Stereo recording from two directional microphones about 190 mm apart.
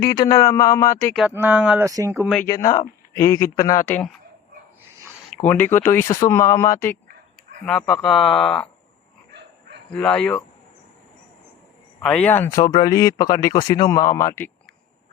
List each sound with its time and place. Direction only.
0.0 s speech: 20° left (ahead or behind)
1.1 s speech: 5° right (ahead or behind)
2.2 s speech: centre (ahead or behind)
2.5 s speech: 20° left (ahead or behind)
5.5 s speech: 10° left (ahead or behind)
9.9 s speech: 5° left (ahead or behind)
12.0 s speech: 10° left (ahead or behind)